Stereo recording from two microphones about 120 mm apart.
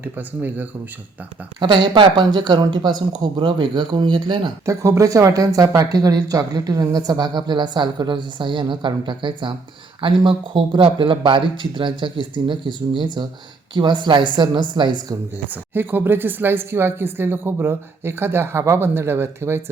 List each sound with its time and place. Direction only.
0.0 s speech: 15° right (ahead or behind)
1.5 s speech: 40° right (ahead or behind)
4.6 s speech: 25° right (ahead or behind)
15.7 s speech: 15° right (ahead or behind)